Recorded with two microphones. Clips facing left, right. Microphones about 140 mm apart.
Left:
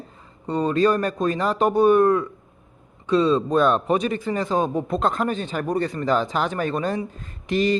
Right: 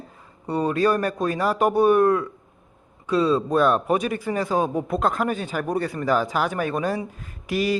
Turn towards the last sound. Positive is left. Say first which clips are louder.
# left 2 dB
turn(degrees=-10)  # may be behind; listen again after turning